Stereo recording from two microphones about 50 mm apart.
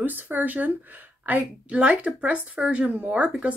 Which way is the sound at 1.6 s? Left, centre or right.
Right.